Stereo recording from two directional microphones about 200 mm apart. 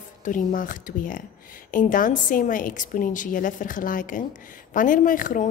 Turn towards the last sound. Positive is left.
turn(degrees=40)  # may be behind; listen again after turning